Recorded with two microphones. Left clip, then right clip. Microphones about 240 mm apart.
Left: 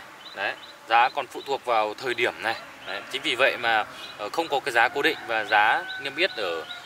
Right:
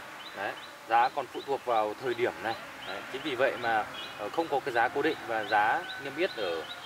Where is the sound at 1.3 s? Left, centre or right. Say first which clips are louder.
Left 4 dB; right.